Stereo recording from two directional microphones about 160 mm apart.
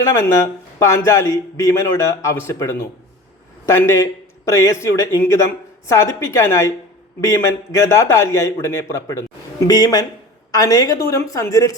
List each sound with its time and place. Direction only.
0.0 s a man's voice: 20° left (ahead or behind)